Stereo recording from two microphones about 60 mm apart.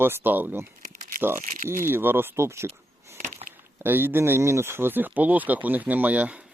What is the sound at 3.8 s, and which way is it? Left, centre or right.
Speech, right.